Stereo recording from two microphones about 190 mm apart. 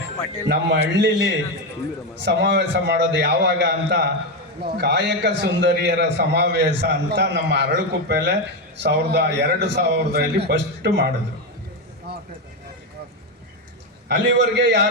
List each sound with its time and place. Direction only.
0.4 s a man's voice: 65° right (ahead or behind)
12.1 s vehicle: 55° right (ahead or behind)
14.1 s a man's voice: 65° right (ahead or behind)